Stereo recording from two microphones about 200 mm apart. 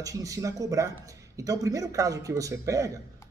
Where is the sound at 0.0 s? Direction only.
15° right (ahead or behind).